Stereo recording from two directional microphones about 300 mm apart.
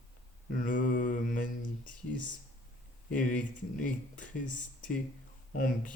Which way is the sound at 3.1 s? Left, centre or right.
Left.